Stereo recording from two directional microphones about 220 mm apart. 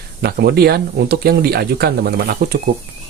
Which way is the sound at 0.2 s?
45° right (ahead or behind).